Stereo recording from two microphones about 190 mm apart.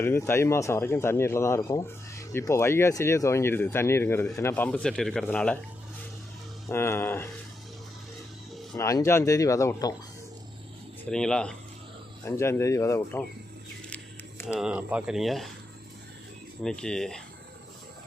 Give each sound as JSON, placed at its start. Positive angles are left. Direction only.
{"t": 0.0, "sound": "speech", "side_deg": 15}
{"t": 6.7, "sound": "speech", "side_deg": 10}
{"t": 8.7, "sound": "speech", "side_deg": 15}
{"t": 11.1, "sound": "speech", "side_deg": 5}
{"t": 14.4, "sound": "speech", "side_deg": -5}
{"t": 16.6, "sound": "speech", "side_deg": 5}